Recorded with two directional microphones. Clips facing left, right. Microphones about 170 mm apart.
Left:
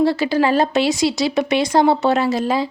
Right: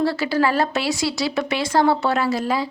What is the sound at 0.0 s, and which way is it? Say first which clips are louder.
Speech: left 3 dB; 20° left (ahead or behind).